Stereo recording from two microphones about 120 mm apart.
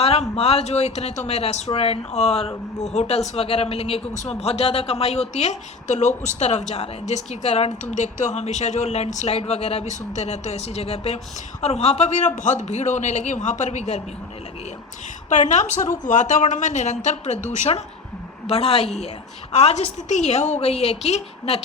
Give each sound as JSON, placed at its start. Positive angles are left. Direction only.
{"t": 0.0, "sound": "speech", "side_deg": 60}
{"t": 7.9, "sound": "speech", "side_deg": 80}
{"t": 15.3, "sound": "a woman's voice", "side_deg": 85}
{"t": 18.4, "sound": "speech", "side_deg": 55}